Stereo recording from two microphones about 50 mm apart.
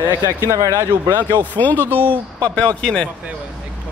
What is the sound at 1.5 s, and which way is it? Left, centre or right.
Speech, left.